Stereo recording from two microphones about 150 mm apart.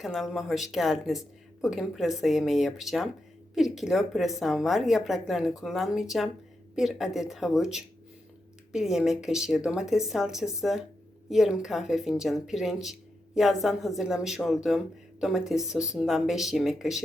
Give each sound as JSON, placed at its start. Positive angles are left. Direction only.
{"t": 0.0, "sound": "speech", "side_deg": 0}